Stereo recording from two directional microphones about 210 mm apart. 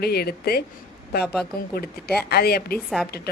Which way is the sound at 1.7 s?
50° left (ahead or behind).